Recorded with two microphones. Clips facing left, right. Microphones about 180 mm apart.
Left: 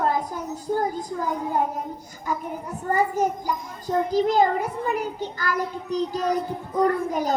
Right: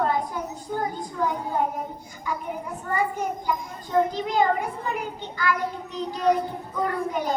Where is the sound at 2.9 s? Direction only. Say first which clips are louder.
Left 4 dB; 40° left (ahead or behind).